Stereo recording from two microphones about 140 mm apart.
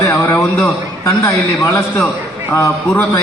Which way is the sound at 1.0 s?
20° left (ahead or behind).